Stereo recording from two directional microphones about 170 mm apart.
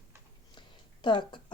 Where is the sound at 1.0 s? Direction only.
25° left (ahead or behind).